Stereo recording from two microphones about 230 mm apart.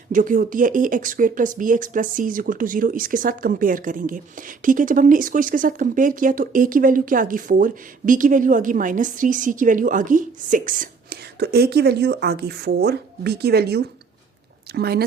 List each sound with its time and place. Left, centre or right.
0.1 s speech: right